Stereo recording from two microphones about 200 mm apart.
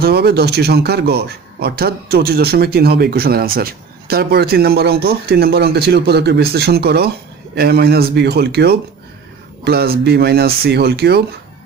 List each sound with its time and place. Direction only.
0.0 s a man's voice: 55° right (ahead or behind)